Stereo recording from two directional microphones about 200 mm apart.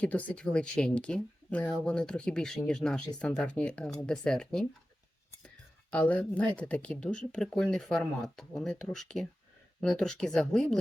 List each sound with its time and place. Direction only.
0.0 s speech: 5° left (ahead or behind)
5.9 s speech: 5° left (ahead or behind)